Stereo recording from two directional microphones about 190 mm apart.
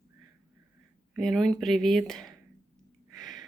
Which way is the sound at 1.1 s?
Centre (ahead or behind).